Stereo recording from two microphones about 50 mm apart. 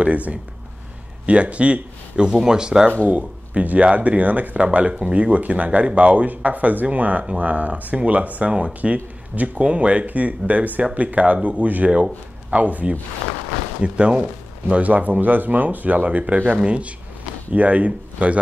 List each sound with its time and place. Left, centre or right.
0.0 s speech: right
3.1 s speech: right
13.9 s speech: right